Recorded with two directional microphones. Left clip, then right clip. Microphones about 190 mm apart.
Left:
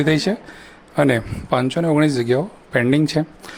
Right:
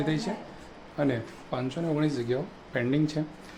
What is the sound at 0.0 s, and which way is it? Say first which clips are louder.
Speech: left 12 dB; 40° left (ahead or behind).